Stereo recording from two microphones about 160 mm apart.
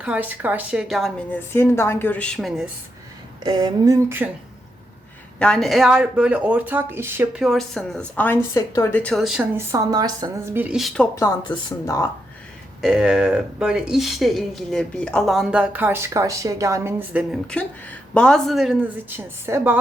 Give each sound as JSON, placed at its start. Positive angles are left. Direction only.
{"t": 0.0, "sound": "speech", "side_deg": -10}
{"t": 1.3, "sound": "a woman's voice", "side_deg": 15}
{"t": 3.4, "sound": "speech", "side_deg": -25}
{"t": 5.4, "sound": "speech", "side_deg": 5}
{"t": 7.4, "sound": "speech", "side_deg": 0}
{"t": 8.5, "sound": "a woman's voice", "side_deg": 20}
{"t": 9.6, "sound": "speech", "side_deg": -20}
{"t": 11.1, "sound": "speech", "side_deg": 20}
{"t": 11.4, "sound": "speech", "side_deg": 30}
{"t": 12.8, "sound": "speech", "side_deg": 0}
{"t": 18.1, "sound": "speech", "side_deg": 5}